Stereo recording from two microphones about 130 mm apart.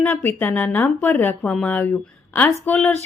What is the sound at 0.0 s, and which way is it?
A woman's voice, 15° left (ahead or behind).